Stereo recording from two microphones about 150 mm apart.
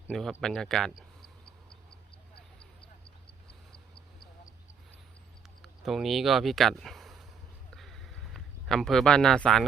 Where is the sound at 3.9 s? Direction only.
70° left (ahead or behind).